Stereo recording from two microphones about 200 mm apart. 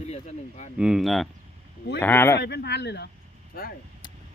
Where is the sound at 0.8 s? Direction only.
5° right (ahead or behind).